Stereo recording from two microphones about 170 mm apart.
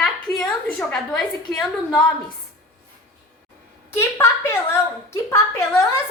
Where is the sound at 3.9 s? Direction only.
15° left (ahead or behind).